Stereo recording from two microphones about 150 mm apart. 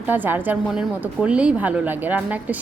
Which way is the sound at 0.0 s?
10° right (ahead or behind).